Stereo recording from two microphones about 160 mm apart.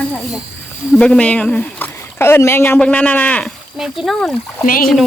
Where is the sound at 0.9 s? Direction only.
5° left (ahead or behind).